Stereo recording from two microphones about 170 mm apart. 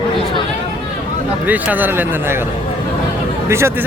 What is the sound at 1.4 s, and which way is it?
Speech, 10° right (ahead or behind).